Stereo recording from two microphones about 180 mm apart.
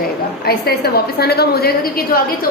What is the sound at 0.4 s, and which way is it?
A woman's voice, 60° left (ahead or behind).